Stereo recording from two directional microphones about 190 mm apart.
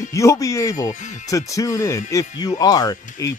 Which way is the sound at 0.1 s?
15° left (ahead or behind).